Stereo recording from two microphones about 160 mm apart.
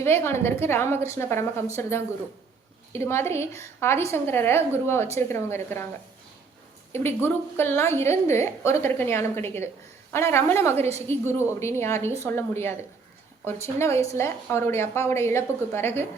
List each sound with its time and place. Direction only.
0.0 s a woman's voice: 15° left (ahead or behind)
6.9 s a woman's voice: 15° left (ahead or behind)